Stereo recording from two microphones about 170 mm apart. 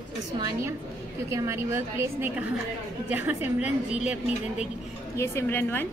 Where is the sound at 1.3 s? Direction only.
15° right (ahead or behind).